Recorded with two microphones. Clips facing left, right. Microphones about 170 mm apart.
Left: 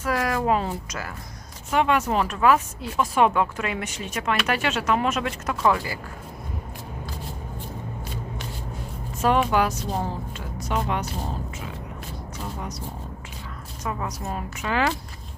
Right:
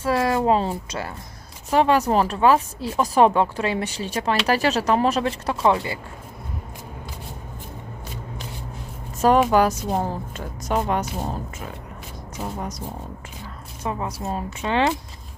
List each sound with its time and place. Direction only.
0.0 s a woman's voice: 30° right (ahead or behind)
9.2 s speech: 40° right (ahead or behind)
12.5 s speech: 45° right (ahead or behind)
13.8 s a woman's voice: 25° right (ahead or behind)